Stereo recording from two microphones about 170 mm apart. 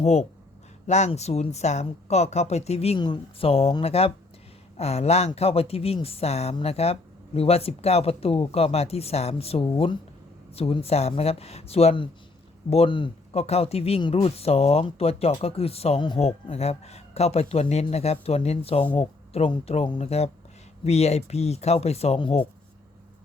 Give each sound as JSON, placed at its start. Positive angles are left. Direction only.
{"t": 0.0, "sound": "speech", "side_deg": 40}